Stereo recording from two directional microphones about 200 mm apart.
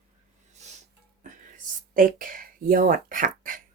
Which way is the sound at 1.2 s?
40° right (ahead or behind).